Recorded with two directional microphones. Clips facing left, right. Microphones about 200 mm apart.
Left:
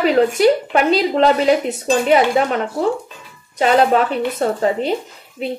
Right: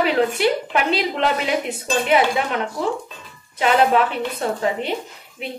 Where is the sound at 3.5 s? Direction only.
40° left (ahead or behind).